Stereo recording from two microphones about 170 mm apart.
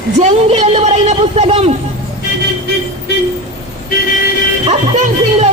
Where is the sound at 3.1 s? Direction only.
80° left.